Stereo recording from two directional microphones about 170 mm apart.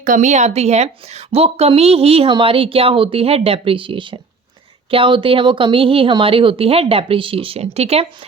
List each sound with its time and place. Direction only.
0.0 s a woman's voice: 50° right (ahead or behind)